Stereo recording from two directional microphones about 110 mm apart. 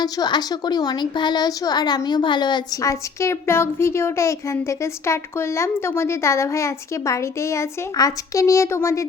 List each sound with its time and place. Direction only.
0.0 s a woman's voice: 40° left (ahead or behind)
2.8 s a woman's voice: 25° left (ahead or behind)